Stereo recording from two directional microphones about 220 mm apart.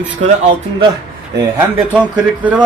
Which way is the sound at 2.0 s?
5° right (ahead or behind).